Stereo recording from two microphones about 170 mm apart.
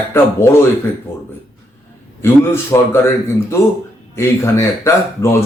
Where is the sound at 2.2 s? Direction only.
15° left (ahead or behind).